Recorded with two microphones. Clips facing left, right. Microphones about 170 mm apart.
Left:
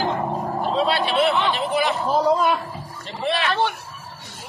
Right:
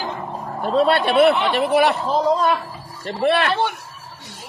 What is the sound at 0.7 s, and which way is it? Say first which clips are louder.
Speech: right 6 dB; 55° right (ahead or behind).